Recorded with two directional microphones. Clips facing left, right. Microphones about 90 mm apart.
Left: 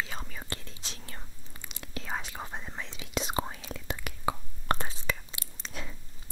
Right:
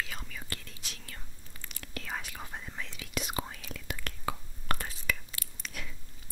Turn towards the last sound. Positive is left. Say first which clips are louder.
# left 2 dB
turn(degrees=30)  # may be behind; listen again after turning